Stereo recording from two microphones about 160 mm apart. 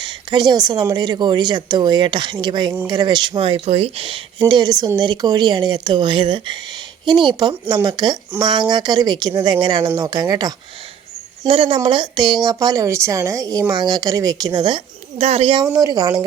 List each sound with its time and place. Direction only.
0.0 s speech: 30° right (ahead or behind)